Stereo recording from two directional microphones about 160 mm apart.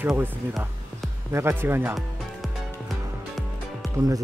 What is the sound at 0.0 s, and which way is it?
Speech, 10° right (ahead or behind).